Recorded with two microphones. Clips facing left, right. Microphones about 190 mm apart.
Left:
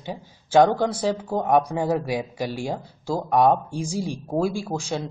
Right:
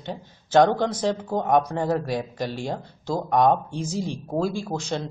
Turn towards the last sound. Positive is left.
turn(degrees=10)  # may be behind; listen again after turning